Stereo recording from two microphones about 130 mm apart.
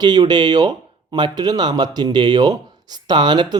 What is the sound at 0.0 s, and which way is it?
Speech, 35° right (ahead or behind).